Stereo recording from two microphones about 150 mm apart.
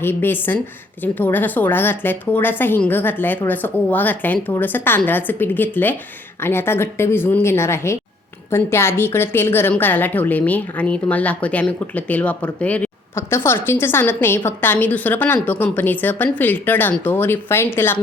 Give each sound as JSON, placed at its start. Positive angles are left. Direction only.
{"t": 0.0, "sound": "a woman's voice", "side_deg": 15}